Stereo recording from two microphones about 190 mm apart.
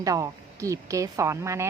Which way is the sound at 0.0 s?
15° right (ahead or behind).